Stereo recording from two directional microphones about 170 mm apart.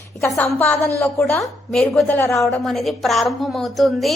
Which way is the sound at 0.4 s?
10° left (ahead or behind).